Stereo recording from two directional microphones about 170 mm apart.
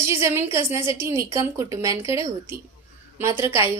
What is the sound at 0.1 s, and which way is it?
A woman's voice, 15° right (ahead or behind).